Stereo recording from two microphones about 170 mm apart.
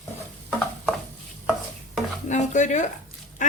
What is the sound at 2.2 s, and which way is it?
Stir, 45° left (ahead or behind).